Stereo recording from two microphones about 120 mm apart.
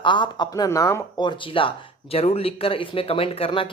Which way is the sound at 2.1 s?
55° left (ahead or behind).